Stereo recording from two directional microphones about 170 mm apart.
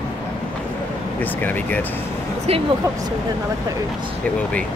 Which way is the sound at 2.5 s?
35° right (ahead or behind).